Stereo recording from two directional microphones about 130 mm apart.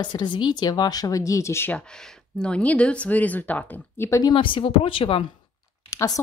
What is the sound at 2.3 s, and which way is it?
Speech, 10° left (ahead or behind).